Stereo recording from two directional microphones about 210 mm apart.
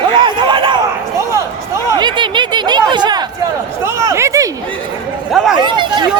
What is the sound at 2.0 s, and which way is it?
Speech, 20° right (ahead or behind).